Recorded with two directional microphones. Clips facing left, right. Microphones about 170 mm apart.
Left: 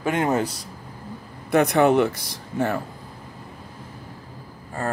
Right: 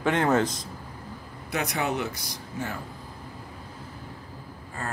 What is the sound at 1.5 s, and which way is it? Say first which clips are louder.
Speech: left 11 dB; 55° left (ahead or behind).